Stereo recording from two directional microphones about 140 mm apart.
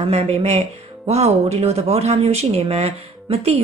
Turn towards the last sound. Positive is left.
turn(degrees=-45)  # may be behind; listen again after turning